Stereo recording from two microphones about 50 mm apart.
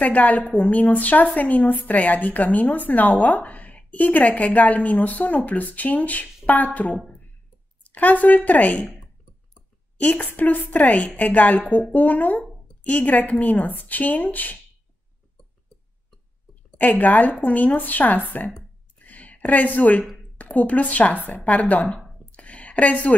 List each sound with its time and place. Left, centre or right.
0.0 s a woman's voice: left
9.9 s a woman's voice: left
16.7 s a woman's voice: left
18.4 s a sound: left
20.3 s a woman's voice: left
21.8 s a sound: left